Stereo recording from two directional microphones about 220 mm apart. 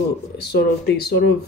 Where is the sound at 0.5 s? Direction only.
45° left (ahead or behind).